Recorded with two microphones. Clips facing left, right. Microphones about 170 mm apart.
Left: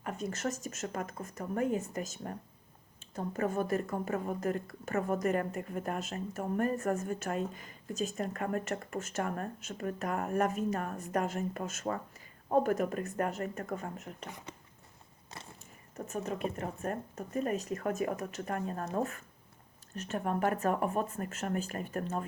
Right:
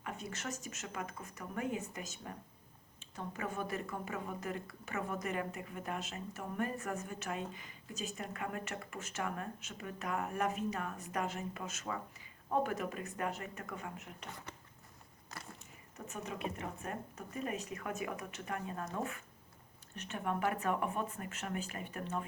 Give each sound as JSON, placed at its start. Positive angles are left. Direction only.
{"t": 0.0, "sound": "a woman's voice", "side_deg": 45}
{"t": 16.0, "sound": "a woman's voice", "side_deg": 45}